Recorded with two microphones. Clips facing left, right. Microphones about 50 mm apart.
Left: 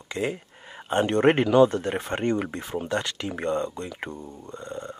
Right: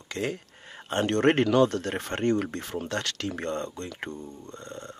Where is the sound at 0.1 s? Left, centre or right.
Centre.